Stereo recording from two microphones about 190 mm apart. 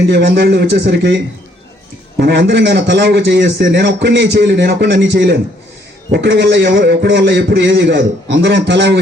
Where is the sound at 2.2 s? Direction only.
60° right (ahead or behind).